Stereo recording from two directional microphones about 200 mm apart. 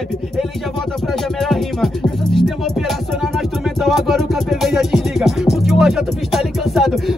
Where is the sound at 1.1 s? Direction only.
Centre (ahead or behind).